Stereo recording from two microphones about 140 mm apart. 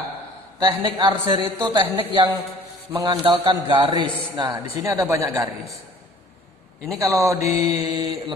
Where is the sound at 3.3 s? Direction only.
40° right (ahead or behind).